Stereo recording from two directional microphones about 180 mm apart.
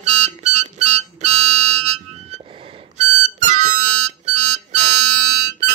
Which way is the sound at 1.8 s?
40° right (ahead or behind).